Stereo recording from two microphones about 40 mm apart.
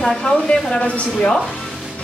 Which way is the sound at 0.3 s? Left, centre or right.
Centre.